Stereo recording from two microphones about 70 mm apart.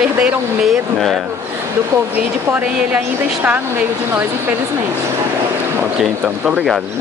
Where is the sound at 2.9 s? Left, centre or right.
Right.